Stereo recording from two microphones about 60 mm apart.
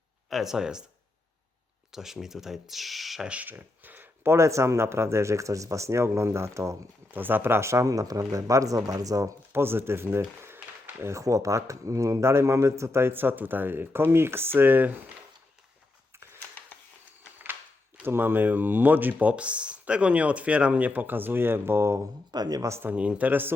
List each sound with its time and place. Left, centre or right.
0.3 s speech: centre
1.9 s speech: centre
3.2 s speech: right
7.1 s speech: right
9.5 s speech: right
11.0 s speech: right
18.0 s speech: right
22.4 s speech: right
23.0 s speech: right